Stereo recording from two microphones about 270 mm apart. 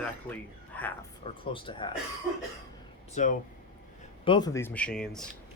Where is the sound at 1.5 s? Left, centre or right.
Centre.